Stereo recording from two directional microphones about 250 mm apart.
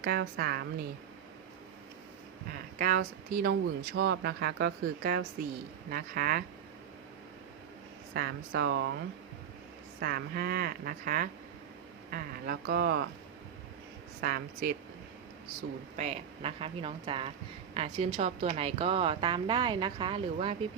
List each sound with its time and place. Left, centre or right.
0.0 s speech: right
2.7 s speech: right
8.1 s speech: right
14.2 s speech: right
16.0 s a woman's voice: right